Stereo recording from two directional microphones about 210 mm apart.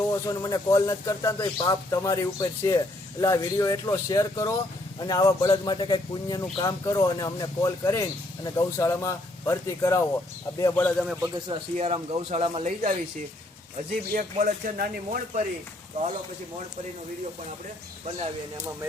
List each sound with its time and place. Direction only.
0.3 s a man's voice: 15° left (ahead or behind)
11.4 s a man's voice: 25° right (ahead or behind)
14.1 s speech: 40° right (ahead or behind)